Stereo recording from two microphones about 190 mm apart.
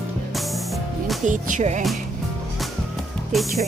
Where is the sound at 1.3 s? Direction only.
40° right (ahead or behind).